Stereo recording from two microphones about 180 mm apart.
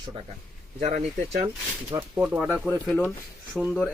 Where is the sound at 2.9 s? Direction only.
10° left (ahead or behind).